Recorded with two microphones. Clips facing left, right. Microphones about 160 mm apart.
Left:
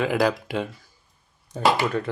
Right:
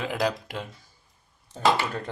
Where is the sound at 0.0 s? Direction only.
90° left.